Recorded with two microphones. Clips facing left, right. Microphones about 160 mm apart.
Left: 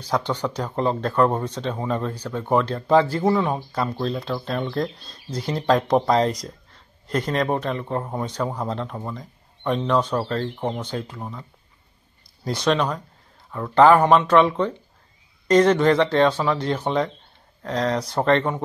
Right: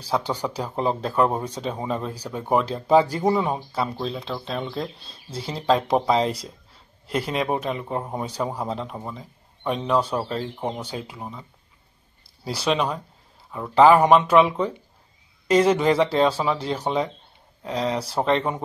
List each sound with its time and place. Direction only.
0.1 s speech: 10° right (ahead or behind)
12.4 s speech: 5° right (ahead or behind)